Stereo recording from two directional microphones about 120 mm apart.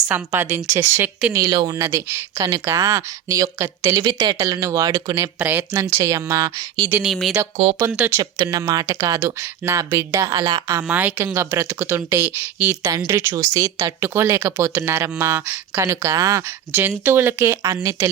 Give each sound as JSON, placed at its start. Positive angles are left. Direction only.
{"t": 0.1, "sound": "speech", "side_deg": -20}
{"t": 1.4, "sound": "speech", "side_deg": -35}
{"t": 1.7, "sound": "speech", "side_deg": -25}
{"t": 4.0, "sound": "speech", "side_deg": -40}
{"t": 4.4, "sound": "speech", "side_deg": -30}
{"t": 5.4, "sound": "speech", "side_deg": -15}
{"t": 7.0, "sound": "speech", "side_deg": 0}
{"t": 7.5, "sound": "speech", "side_deg": -65}
{"t": 7.8, "sound": "speech", "side_deg": -15}
{"t": 8.2, "sound": "speech", "side_deg": -30}
{"t": 10.8, "sound": "speech", "side_deg": -15}